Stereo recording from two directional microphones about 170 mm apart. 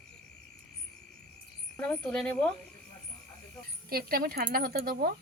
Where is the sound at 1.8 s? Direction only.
5° left (ahead or behind).